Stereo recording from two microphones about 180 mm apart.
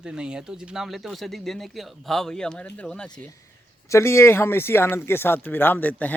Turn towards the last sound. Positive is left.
turn(degrees=10)  # may be behind; listen again after turning